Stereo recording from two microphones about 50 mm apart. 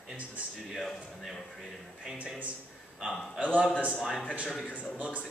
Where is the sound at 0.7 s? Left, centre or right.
Centre.